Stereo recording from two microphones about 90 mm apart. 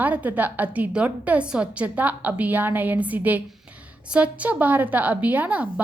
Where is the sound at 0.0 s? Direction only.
20° right (ahead or behind).